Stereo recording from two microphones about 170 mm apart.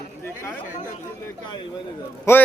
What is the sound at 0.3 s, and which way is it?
Speech, 15° left (ahead or behind).